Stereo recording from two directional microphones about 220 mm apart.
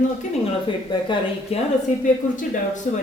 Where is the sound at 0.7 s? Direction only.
20° left (ahead or behind).